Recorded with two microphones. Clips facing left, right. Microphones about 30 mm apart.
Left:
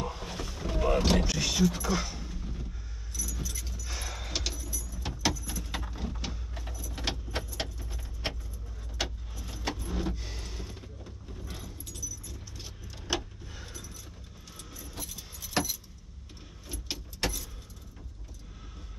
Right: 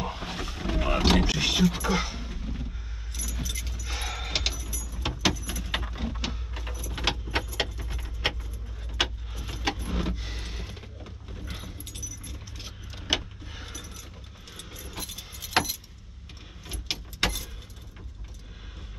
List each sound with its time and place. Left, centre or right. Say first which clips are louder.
0.0 s vehicle: right 3 dB; right
1.2 s a sound: right 3 dB; right
3.1 s keys jangling: right 2 dB; right
3.8 s a sound: right 6 dB; right
4.9 s vehicle: right 6 dB; right
5.5 s keys jangling: right 5 dB; right
5.9 s a sound: right 4 dB; right
6.3 s vehicle: right 4 dB; right
12.0 s keys jangling: right 1 dB; right
12.8 s vehicle: right 5 dB; right
13.7 s a sound: right 4 dB; right
14.5 s keys jangling: right 4 dB; right
16.6 s vehicle: right 5 dB; right